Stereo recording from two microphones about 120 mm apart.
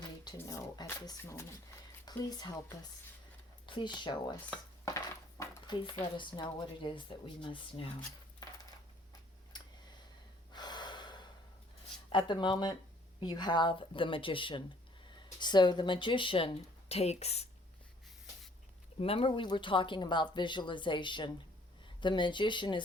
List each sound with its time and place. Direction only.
0.4 s a sound: 30° left (ahead or behind)
1.2 s speech: 25° left (ahead or behind)
2.0 s speech: 35° left (ahead or behind)
10.5 s gasp: 35° left (ahead or behind)
12.1 s speech: 40° left (ahead or behind)
16.9 s speech: 65° left (ahead or behind)
18.9 s speech: 50° left (ahead or behind)